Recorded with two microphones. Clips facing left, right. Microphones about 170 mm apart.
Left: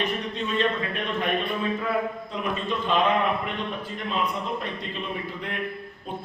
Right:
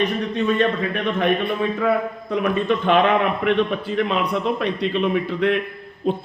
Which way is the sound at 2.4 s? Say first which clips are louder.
Right 8 dB; 70° right (ahead or behind).